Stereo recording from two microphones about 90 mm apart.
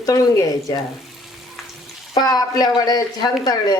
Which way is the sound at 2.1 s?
45° left (ahead or behind).